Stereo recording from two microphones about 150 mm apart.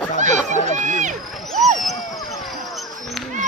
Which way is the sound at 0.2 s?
55° right (ahead or behind).